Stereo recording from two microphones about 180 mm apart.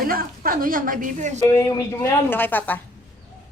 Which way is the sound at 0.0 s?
55° right (ahead or behind).